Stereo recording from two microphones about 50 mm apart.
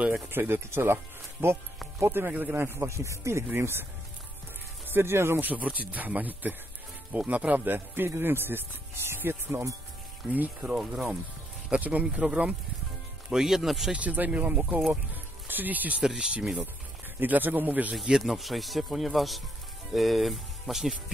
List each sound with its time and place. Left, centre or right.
0.3 s speech: right
2.0 s speech: right
2.9 s speech: right
3.5 s speech: right
4.8 s speech: right
5.4 s speech: right
10.3 s speech: right
10.7 s speech: centre
11.7 s speech: right
13.3 s speech: centre
13.9 s speech: right
16.0 s speech: centre
17.2 s speech: right
18.0 s speech: centre